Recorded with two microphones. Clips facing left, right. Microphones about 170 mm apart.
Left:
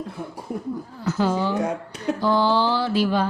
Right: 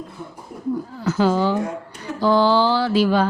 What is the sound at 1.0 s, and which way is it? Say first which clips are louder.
Mantra: right 4 dB; 90° right.